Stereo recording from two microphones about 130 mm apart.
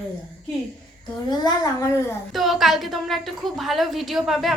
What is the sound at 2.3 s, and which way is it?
A woman's voice, centre (ahead or behind).